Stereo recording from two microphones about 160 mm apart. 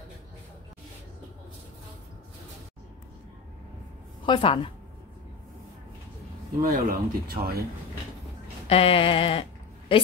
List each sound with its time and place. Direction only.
4.3 s a woman's voice: 35° left (ahead or behind)
6.6 s speech: 60° right (ahead or behind)
8.6 s speech: 35° left (ahead or behind)